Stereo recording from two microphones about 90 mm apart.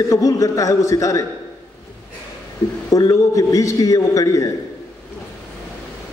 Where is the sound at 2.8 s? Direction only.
40° left (ahead or behind).